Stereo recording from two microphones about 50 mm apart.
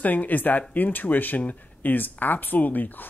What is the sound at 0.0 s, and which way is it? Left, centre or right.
Speech, left.